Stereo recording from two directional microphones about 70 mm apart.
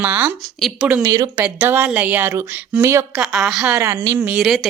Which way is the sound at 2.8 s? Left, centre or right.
Right.